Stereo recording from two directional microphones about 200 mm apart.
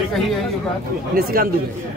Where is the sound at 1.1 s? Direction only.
45° right (ahead or behind).